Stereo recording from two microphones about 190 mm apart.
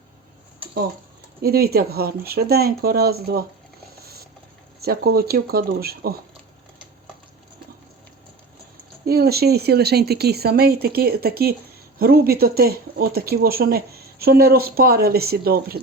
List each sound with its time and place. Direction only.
1.4 s speech: 55° right (ahead or behind)
4.0 s a sound: 55° right (ahead or behind)
4.8 s speech: 55° right (ahead or behind)
9.0 s speech: 55° right (ahead or behind)